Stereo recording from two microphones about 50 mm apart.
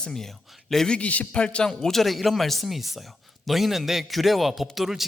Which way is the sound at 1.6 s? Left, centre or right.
Centre.